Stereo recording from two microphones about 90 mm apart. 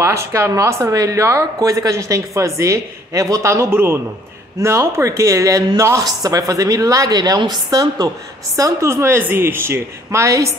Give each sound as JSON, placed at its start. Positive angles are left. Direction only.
{"t": 0.0, "sound": "a woman's voice", "side_deg": -30}